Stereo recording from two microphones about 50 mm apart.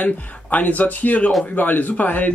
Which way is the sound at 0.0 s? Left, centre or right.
Left.